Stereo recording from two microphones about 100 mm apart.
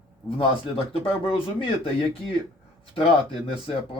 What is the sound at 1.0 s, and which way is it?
Speech, 70° left (ahead or behind).